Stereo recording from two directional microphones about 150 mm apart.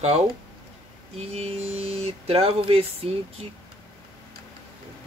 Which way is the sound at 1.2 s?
45° right (ahead or behind).